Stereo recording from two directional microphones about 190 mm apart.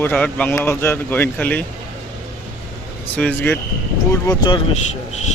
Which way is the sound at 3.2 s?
5° left (ahead or behind).